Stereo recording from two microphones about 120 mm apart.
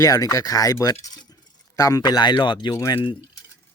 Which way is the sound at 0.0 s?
30° left (ahead or behind).